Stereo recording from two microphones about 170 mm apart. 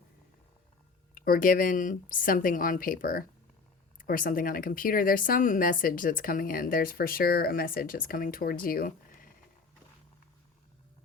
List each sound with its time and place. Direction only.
1.1 s speech: 55° left (ahead or behind)